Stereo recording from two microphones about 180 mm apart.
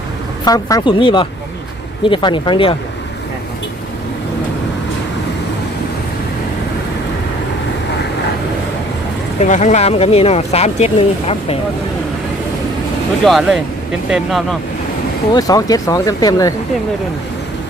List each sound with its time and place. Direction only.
0.4 s speech: 20° left (ahead or behind)
9.4 s speech: 40° left (ahead or behind)
13.2 s speech: centre (ahead or behind)
15.3 s speech: 20° left (ahead or behind)